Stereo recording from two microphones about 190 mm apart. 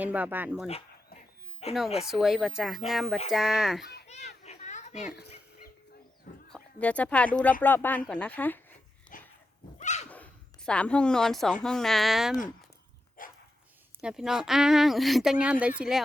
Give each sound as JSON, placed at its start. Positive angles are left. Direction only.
{"t": 0.0, "sound": "speech", "side_deg": -10}
{"t": 1.6, "sound": "speech", "side_deg": 35}
{"t": 2.0, "sound": "speech", "side_deg": 0}
{"t": 4.1, "sound": "children playing", "side_deg": 35}
{"t": 6.5, "sound": "speech", "side_deg": 5}
{"t": 9.1, "sound": "dog", "side_deg": 45}
{"t": 10.1, "sound": "bow-wow", "side_deg": 5}
{"t": 11.6, "sound": "speech", "side_deg": 0}
{"t": 13.2, "sound": "dog", "side_deg": 45}
{"t": 14.0, "sound": "speech", "side_deg": -5}